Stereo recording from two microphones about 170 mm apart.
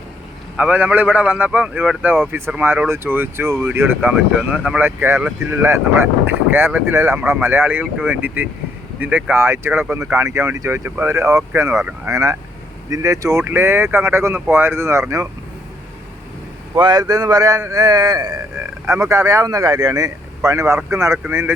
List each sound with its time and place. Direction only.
0.5 s a man's voice: 10° right (ahead or behind)
16.7 s a man's voice: 25° right (ahead or behind)